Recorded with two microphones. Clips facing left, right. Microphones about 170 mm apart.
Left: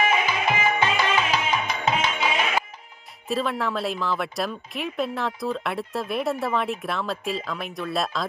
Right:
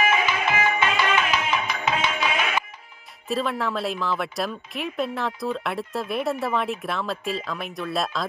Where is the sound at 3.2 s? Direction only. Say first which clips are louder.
Even; centre (ahead or behind).